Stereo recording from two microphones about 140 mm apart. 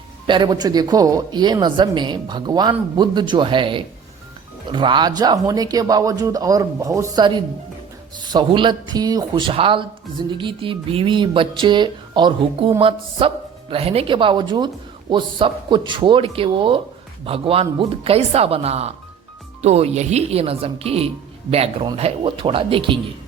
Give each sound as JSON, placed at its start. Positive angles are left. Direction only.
{"t": 0.3, "sound": "a man's voice", "side_deg": -30}
{"t": 7.2, "sound": "speech", "side_deg": -35}